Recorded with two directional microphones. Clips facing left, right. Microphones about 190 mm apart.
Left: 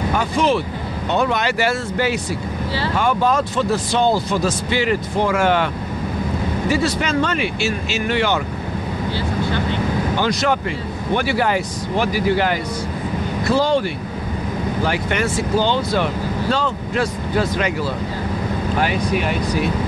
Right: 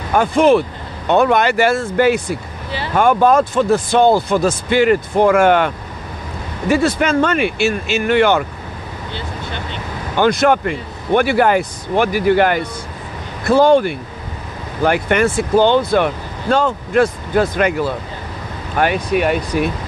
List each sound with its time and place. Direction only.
0.1 s speech: 55° right (ahead or behind)
6.7 s speech: 55° right (ahead or behind)
9.1 s vehicle: 20° right (ahead or behind)
10.1 s speech: 55° right (ahead or behind)
18.8 s speech: 55° right (ahead or behind)